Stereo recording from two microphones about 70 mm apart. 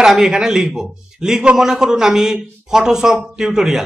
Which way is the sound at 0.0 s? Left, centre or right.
Centre.